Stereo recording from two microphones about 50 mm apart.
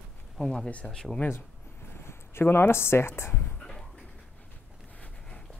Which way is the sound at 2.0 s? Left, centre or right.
Left.